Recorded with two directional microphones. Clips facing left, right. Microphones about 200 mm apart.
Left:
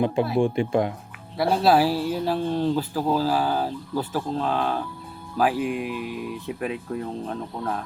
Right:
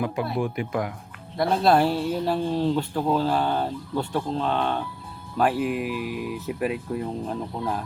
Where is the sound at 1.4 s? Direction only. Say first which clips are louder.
Left 1 dB; 5° left (ahead or behind).